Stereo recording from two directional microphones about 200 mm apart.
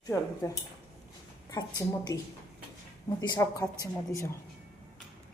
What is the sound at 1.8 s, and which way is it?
Speech, 15° left (ahead or behind).